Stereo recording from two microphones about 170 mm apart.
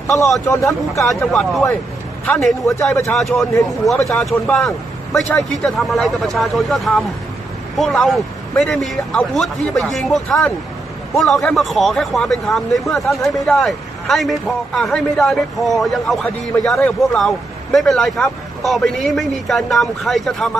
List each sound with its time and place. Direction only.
0.1 s a man's voice: centre (ahead or behind)
0.5 s speech: 20° left (ahead or behind)
0.9 s a man's voice: centre (ahead or behind)
2.6 s speech: 15° left (ahead or behind)
3.1 s a man's voice: centre (ahead or behind)